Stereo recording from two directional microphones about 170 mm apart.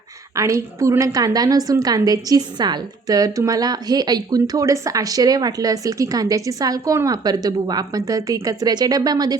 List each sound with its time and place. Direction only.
0.3 s a woman's voice: 20° right (ahead or behind)